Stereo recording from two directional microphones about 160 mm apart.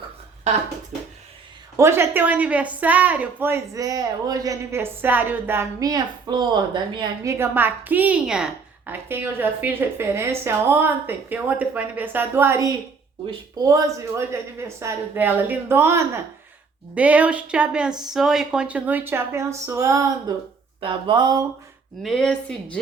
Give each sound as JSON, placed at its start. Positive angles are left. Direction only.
{"t": 1.7, "sound": "a woman's voice", "side_deg": -15}
{"t": 7.3, "sound": "a woman's voice", "side_deg": -15}
{"t": 22.0, "sound": "speech", "side_deg": 0}